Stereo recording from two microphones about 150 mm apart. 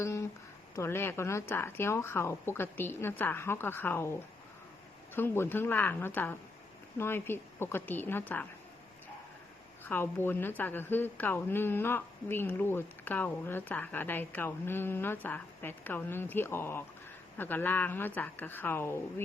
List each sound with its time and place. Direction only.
0.0 s a sound: 20° left (ahead or behind)
0.8 s a woman's voice: 15° left (ahead or behind)
5.1 s a woman's voice: 15° left (ahead or behind)
9.8 s a woman's voice: 15° left (ahead or behind)